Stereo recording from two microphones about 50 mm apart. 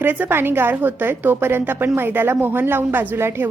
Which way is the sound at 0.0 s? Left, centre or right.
Right.